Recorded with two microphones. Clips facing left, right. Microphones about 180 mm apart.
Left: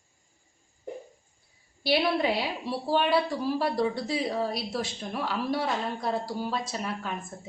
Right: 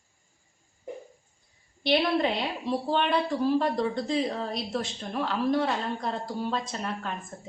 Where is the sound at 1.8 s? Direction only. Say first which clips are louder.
Right 1 dB; 5° left (ahead or behind).